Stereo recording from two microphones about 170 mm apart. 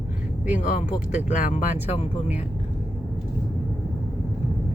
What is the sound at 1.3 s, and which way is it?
Speech, 45° left (ahead or behind).